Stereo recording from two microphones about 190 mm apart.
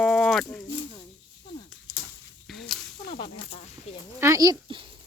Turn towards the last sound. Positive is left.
turn(degrees=-25)  # may be behind; listen again after turning